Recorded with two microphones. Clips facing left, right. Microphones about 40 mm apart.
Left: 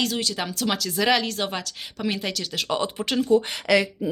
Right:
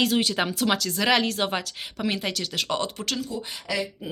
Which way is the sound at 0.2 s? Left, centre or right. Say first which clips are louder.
Right 3 dB; right.